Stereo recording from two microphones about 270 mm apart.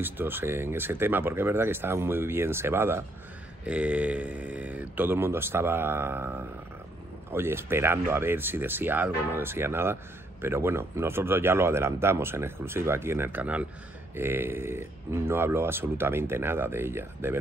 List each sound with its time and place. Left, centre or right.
0.0 s speech: centre